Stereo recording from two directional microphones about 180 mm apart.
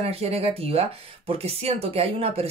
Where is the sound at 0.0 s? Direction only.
35° right (ahead or behind).